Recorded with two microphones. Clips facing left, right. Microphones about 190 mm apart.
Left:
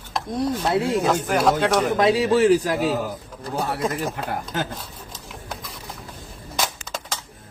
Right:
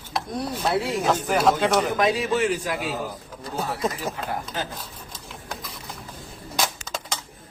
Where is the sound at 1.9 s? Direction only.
30° left (ahead or behind).